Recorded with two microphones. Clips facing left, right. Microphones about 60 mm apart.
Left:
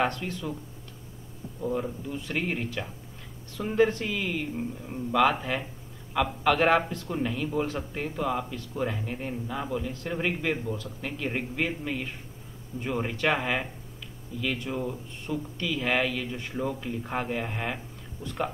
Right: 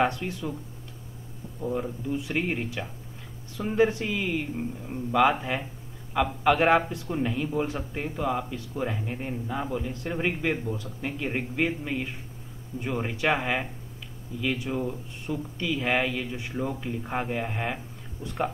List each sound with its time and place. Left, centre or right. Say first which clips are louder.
0.0 s speech: right 2 dB; centre
1.6 s speech: even; centre
18.2 s speech: right 2 dB; centre